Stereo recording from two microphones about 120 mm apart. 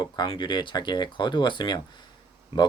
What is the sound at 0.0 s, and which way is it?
Speech, 35° left (ahead or behind).